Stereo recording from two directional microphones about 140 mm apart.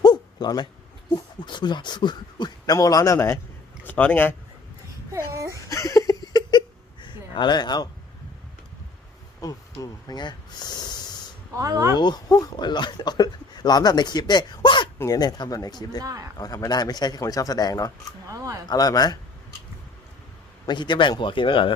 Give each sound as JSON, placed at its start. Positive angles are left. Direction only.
{"t": 0.0, "sound": "a sound", "side_deg": 30}
{"t": 1.1, "sound": "speech", "side_deg": 35}
{"t": 5.1, "sound": "speech", "side_deg": -20}
{"t": 5.6, "sound": "a sound", "side_deg": 25}
{"t": 9.4, "sound": "speech", "side_deg": 25}
{"t": 11.5, "sound": "speech", "side_deg": -25}
{"t": 11.9, "sound": "a man's voice", "side_deg": 30}
{"t": 16.0, "sound": "speech", "side_deg": -25}
{"t": 16.4, "sound": "a man's voice", "side_deg": 25}
{"t": 18.3, "sound": "speech", "side_deg": -25}
{"t": 18.7, "sound": "a man's voice", "side_deg": 25}
{"t": 20.7, "sound": "speech", "side_deg": 35}